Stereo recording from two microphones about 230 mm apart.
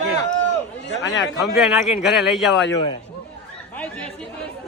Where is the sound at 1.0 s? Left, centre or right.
Left.